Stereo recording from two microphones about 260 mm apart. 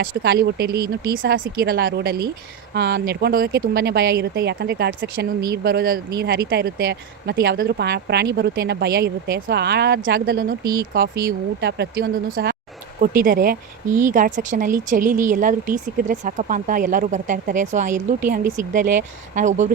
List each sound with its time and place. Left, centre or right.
0.0 s speech: right
10.6 s speech: right
11.3 s speech: right